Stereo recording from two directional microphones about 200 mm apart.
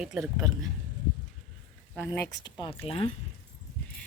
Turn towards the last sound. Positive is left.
turn(degrees=30)  # may be behind; listen again after turning